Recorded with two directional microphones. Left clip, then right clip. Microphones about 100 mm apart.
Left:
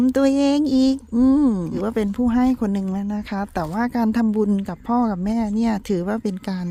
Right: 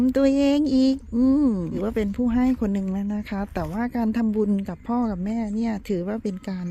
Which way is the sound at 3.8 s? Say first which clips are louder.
Left 4 dB; 30° left (ahead or behind).